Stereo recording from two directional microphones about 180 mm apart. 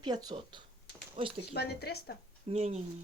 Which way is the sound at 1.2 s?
35° right (ahead or behind).